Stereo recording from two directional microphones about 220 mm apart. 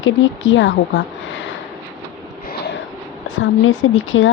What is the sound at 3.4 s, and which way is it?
Speech, 65° left (ahead or behind).